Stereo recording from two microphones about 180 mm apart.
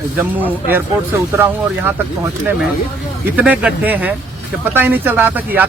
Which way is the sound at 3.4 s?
10° right (ahead or behind).